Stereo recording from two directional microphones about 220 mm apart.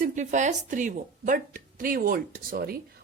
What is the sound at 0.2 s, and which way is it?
A woman's voice, 35° right (ahead or behind).